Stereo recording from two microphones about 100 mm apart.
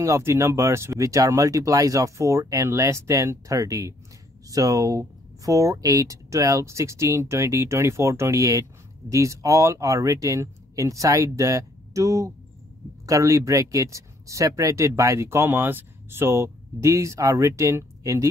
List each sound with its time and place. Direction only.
0.0 s speech: 30° right (ahead or behind)